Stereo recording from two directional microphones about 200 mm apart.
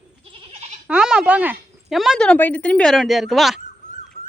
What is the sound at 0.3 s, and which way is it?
Goat, 25° right (ahead or behind).